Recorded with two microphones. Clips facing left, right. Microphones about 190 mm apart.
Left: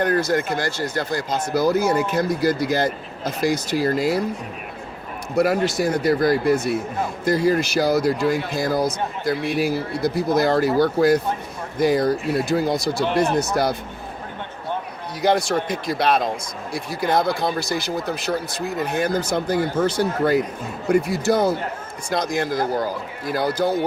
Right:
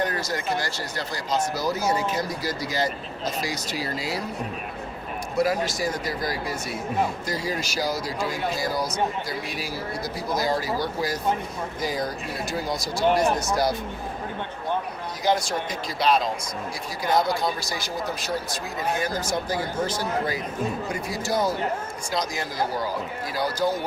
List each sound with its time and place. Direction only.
0.0 s speech: 55° left (ahead or behind)
5.4 s speech: 60° left (ahead or behind)
15.2 s speech: 60° left (ahead or behind)